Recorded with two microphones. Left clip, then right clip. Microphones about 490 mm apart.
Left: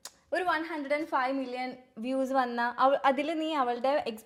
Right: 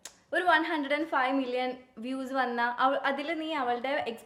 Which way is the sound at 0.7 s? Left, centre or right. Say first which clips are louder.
Right 1 dB; left.